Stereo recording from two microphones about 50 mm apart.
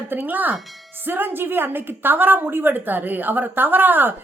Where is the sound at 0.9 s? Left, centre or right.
Right.